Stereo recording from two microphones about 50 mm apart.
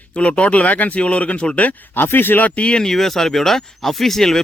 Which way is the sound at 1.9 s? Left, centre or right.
Left.